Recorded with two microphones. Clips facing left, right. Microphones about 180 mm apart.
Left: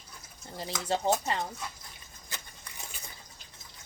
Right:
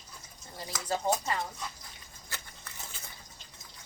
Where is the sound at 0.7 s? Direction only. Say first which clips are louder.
Left 3 dB; centre (ahead or behind).